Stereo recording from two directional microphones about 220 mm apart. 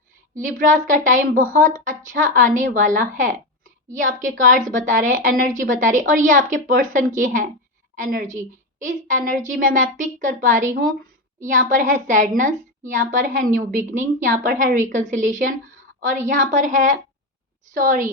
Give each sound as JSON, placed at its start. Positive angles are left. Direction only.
{"t": 0.4, "sound": "a woman's voice", "side_deg": -35}